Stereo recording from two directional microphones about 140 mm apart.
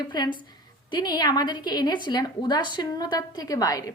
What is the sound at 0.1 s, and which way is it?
A woman's voice, 30° left (ahead or behind).